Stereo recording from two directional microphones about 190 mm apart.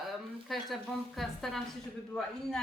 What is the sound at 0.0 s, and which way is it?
Speech, centre (ahead or behind).